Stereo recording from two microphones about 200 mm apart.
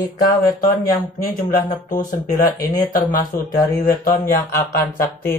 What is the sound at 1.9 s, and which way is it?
Speech, 40° left (ahead or behind).